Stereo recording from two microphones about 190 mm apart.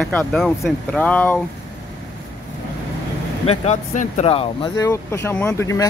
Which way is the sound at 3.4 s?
30° left (ahead or behind).